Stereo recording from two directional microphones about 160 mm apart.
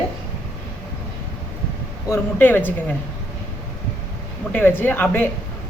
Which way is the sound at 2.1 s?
10° left (ahead or behind).